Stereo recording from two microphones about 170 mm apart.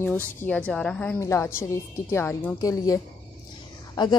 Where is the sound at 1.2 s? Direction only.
15° left (ahead or behind).